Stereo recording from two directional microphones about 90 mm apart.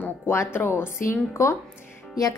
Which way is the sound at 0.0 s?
25° left (ahead or behind).